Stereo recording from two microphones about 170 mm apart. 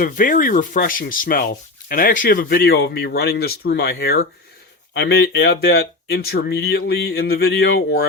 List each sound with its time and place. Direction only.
0.0 s speech: 55° left (ahead or behind)